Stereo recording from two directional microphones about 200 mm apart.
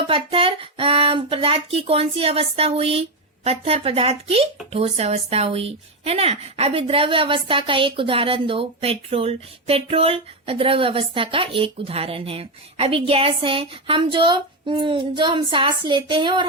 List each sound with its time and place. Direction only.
0.1 s speech: 25° right (ahead or behind)